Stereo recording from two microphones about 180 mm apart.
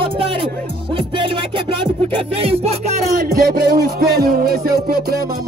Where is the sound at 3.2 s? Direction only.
55° right (ahead or behind).